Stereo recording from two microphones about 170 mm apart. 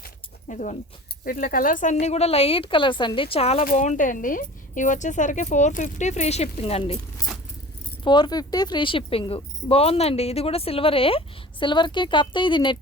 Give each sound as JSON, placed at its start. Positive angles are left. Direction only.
{"t": 0.0, "sound": "a sound", "side_deg": 45}
{"t": 1.2, "sound": "speech", "side_deg": 60}
{"t": 3.6, "sound": "speech", "side_deg": 50}
{"t": 8.0, "sound": "a woman's voice", "side_deg": 25}